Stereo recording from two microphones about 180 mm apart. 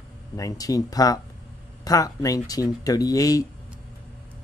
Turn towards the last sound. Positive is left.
turn(degrees=20)  # may be behind; listen again after turning